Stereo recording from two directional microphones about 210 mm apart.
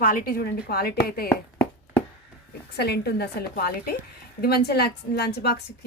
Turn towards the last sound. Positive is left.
turn(degrees=50)  # may be behind; listen again after turning